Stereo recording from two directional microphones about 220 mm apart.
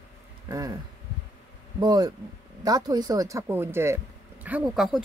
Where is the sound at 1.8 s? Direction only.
20° right (ahead or behind).